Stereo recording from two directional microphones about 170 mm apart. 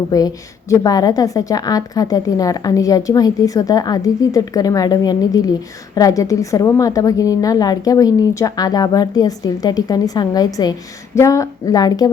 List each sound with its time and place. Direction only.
0.1 s a woman's voice: 20° left (ahead or behind)